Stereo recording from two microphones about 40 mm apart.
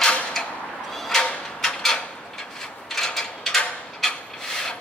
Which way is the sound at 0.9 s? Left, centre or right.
Centre.